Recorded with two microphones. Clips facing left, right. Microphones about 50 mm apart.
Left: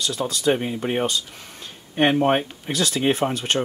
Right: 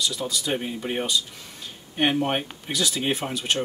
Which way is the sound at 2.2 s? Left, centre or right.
Left.